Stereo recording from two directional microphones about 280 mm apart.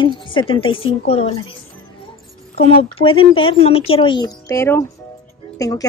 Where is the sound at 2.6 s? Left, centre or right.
Left.